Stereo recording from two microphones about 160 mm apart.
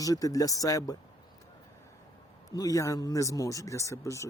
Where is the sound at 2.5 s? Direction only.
20° left (ahead or behind).